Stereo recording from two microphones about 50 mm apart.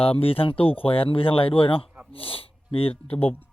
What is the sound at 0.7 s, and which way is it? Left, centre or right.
Speech, left.